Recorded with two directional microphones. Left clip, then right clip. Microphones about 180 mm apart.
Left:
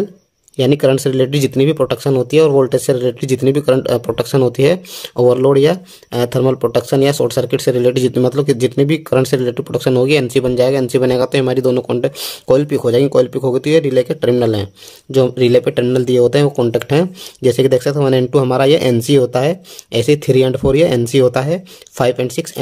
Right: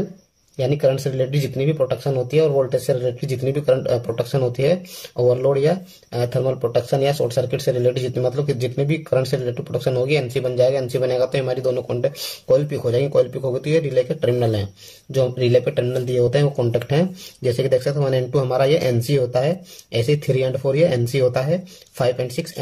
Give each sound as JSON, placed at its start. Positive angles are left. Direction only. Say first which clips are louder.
{"t": 0.6, "sound": "speech", "louder": "left 6 dB", "side_deg": 65}